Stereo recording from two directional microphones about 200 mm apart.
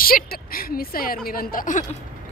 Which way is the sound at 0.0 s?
45° left (ahead or behind).